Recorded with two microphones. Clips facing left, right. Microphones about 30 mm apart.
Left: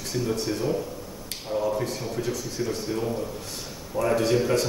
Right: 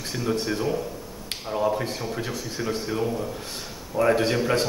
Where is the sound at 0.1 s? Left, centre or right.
Centre.